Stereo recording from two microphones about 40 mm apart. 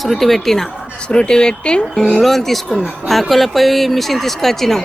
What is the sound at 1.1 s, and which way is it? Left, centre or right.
Speech, centre.